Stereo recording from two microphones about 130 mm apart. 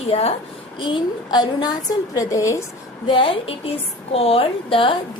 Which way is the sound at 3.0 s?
40° left (ahead or behind).